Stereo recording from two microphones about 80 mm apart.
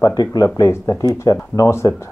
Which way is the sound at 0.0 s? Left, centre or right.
Left.